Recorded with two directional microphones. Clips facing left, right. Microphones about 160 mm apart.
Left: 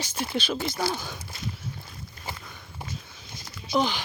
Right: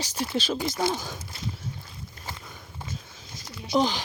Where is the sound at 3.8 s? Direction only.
40° right (ahead or behind).